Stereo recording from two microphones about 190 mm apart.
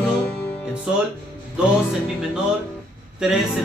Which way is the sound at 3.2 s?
5° right (ahead or behind).